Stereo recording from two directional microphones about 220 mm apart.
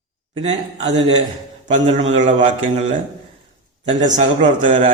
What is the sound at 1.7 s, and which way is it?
Speech, 30° right (ahead or behind).